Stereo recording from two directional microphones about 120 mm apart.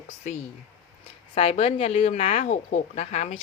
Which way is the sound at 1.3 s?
55° left (ahead or behind).